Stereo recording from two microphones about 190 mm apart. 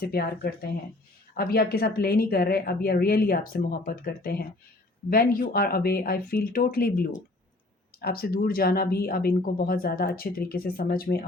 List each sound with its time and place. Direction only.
0.0 s speech: 55° left (ahead or behind)